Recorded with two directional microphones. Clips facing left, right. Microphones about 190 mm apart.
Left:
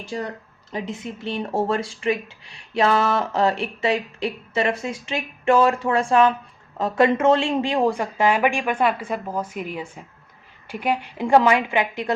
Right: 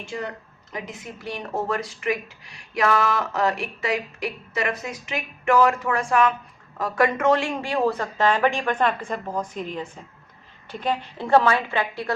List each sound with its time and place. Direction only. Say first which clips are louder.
0.0 s speech: left 2 dB; 35° left (ahead or behind); by 12.1 s 15° left (ahead or behind)